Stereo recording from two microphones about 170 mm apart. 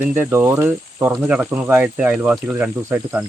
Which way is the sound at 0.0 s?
10° right (ahead or behind).